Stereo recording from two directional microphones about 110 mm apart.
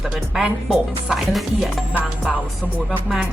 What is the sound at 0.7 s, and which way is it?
Speech, centre (ahead or behind).